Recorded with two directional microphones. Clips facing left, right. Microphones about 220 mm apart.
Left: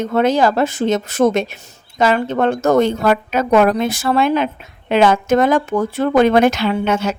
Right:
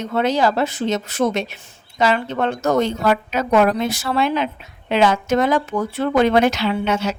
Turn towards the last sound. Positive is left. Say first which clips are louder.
# left 3 dB
turn(degrees=50)  # may be behind; listen again after turning